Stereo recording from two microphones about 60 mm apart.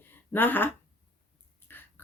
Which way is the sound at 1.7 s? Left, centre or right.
Left.